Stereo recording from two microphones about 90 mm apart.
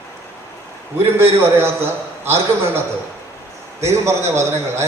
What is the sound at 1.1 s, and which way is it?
A man's voice, 25° right (ahead or behind).